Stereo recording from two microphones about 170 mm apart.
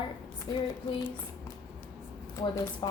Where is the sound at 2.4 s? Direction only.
20° left (ahead or behind).